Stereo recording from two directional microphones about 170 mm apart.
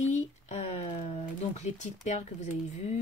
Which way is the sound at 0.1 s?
40° left (ahead or behind).